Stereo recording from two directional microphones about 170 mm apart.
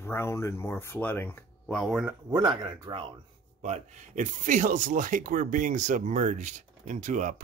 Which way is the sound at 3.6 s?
45° right (ahead or behind).